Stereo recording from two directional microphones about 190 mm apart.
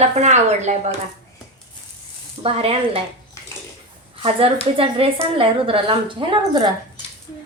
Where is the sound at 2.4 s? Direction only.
30° right (ahead or behind).